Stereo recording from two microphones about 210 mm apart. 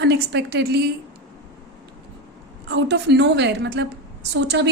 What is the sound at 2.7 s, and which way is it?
A woman's voice, 55° right (ahead or behind).